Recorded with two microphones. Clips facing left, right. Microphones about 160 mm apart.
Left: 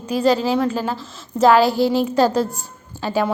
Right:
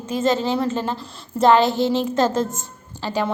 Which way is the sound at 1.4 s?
5° left (ahead or behind).